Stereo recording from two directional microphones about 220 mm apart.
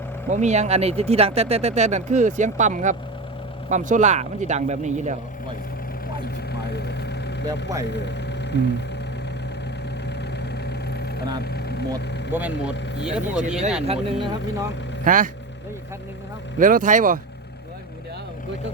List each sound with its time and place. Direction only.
0.3 s speech: 30° right (ahead or behind)
6.5 s vehicle: 50° left (ahead or behind)
10.1 s vehicle: 50° left (ahead or behind)
12.3 s speech: 5° right (ahead or behind)
13.8 s speech: 25° right (ahead or behind)
15.0 s speech: 35° right (ahead or behind)
16.6 s speech: 40° right (ahead or behind)